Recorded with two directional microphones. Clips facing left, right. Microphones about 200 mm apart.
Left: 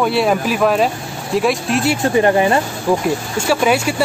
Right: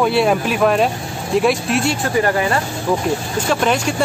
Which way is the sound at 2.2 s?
25° left (ahead or behind).